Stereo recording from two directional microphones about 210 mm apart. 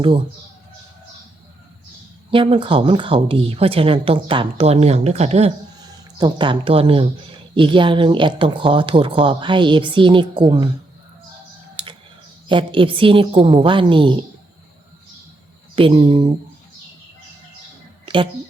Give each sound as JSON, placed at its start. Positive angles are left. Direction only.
{"t": 2.3, "sound": "a woman's voice", "side_deg": -25}
{"t": 11.8, "sound": "typing", "side_deg": -25}
{"t": 12.5, "sound": "a woman's voice", "side_deg": -25}
{"t": 15.7, "sound": "a woman's voice", "side_deg": -25}
{"t": 18.0, "sound": "a sound", "side_deg": -25}